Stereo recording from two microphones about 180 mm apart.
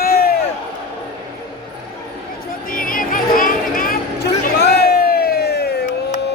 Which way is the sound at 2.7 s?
50° left (ahead or behind).